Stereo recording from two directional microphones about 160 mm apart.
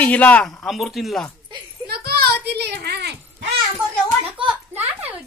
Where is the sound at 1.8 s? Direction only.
75° right (ahead or behind).